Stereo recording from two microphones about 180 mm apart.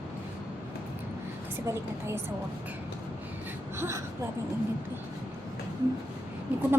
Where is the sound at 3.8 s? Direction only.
15° right (ahead or behind).